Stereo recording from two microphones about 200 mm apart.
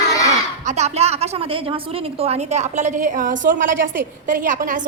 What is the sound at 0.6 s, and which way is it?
A woman's voice, 35° right (ahead or behind).